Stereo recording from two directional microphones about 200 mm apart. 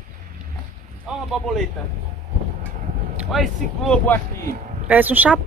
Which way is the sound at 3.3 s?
Centre (ahead or behind).